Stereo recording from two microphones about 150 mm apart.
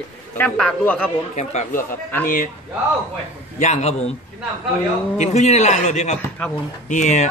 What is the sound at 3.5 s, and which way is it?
Speech, 50° left (ahead or behind).